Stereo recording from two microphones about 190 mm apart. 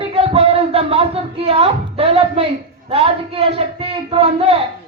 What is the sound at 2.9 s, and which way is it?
A woman's voice, 30° right (ahead or behind).